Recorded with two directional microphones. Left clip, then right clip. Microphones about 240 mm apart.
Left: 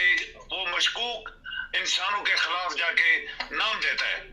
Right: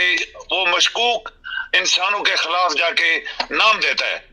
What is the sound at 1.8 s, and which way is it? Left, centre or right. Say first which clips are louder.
Speech: right 7 dB; right.